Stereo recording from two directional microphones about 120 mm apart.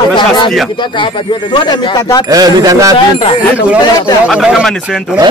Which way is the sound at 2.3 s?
30° right (ahead or behind).